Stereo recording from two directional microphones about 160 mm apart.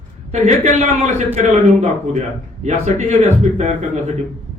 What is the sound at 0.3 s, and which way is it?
A man's voice, 45° right (ahead or behind).